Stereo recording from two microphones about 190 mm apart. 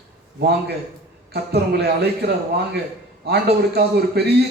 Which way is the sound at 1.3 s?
60° right (ahead or behind).